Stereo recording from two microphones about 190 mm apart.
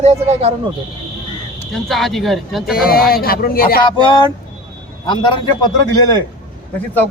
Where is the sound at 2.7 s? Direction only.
50° left (ahead or behind).